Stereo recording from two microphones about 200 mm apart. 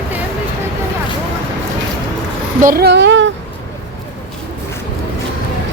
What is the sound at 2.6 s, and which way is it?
Speech, 50° right (ahead or behind).